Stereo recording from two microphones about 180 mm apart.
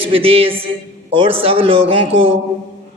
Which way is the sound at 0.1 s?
30° right (ahead or behind).